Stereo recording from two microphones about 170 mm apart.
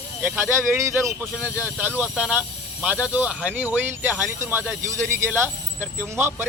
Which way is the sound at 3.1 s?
10° right (ahead or behind).